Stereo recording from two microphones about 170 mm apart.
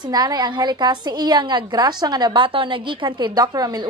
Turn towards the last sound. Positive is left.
turn(degrees=-25)  # may be behind; listen again after turning